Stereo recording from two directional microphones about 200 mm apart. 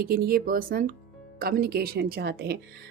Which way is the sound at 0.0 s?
45° right (ahead or behind).